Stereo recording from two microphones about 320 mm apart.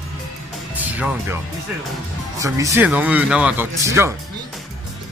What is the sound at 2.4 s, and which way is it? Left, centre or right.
Speech, centre.